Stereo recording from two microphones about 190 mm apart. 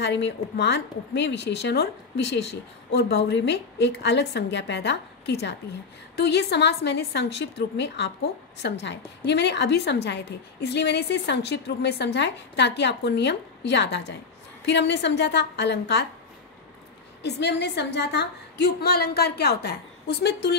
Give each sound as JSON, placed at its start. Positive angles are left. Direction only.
{"t": 0.0, "sound": "a woman's voice", "side_deg": 65}
{"t": 17.2, "sound": "a woman's voice", "side_deg": 65}